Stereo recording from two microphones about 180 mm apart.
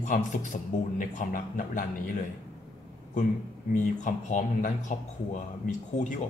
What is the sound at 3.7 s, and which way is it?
Speech, 45° left (ahead or behind).